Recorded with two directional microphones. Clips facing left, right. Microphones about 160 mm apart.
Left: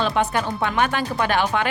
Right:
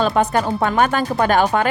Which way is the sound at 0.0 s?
40° right (ahead or behind).